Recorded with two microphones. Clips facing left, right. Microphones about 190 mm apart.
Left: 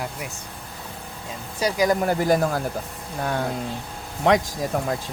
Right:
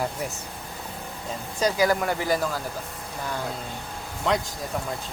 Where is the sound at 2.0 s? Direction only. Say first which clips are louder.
Left 5 dB; 40° left (ahead or behind).